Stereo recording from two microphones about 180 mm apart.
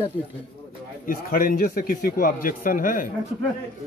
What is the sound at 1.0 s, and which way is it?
A man's voice, 50° left (ahead or behind).